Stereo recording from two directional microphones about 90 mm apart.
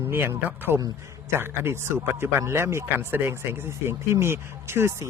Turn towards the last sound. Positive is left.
turn(degrees=-30)  # may be behind; listen again after turning